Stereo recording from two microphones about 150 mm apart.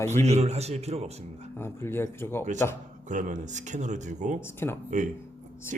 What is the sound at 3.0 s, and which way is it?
Speech, 55° right (ahead or behind).